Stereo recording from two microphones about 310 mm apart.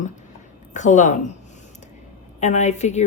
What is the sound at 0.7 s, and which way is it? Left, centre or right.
Speech, left.